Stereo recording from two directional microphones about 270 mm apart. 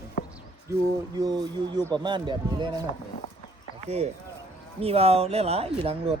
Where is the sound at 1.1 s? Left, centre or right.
Centre.